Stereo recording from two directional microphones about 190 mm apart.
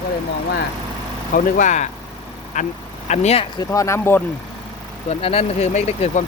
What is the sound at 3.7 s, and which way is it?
Speech, 15° left (ahead or behind).